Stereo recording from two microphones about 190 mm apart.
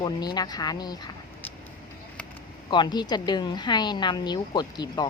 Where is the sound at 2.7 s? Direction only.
25° left (ahead or behind).